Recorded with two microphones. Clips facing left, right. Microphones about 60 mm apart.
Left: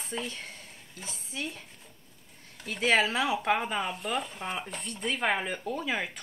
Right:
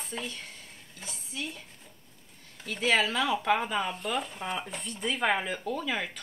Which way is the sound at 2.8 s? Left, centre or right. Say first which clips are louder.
Left 1 dB; left.